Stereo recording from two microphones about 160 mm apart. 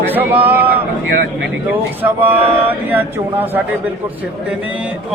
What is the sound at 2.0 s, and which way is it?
Speech, 10° right (ahead or behind).